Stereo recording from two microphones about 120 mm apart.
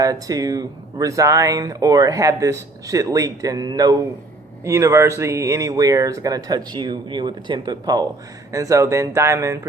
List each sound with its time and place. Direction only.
0.0 s speech: 30° right (ahead or behind)